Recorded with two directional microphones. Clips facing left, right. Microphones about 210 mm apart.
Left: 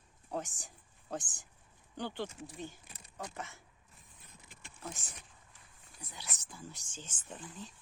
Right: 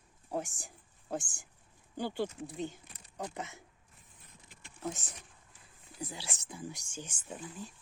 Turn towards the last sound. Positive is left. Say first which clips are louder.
# right 3 dB
turn(degrees=-10)  # may be behind; listen again after turning